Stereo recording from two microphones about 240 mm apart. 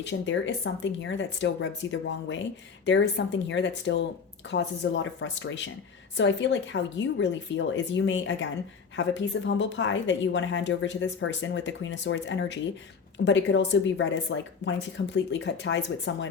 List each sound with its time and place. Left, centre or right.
0.0 s a woman's voice: left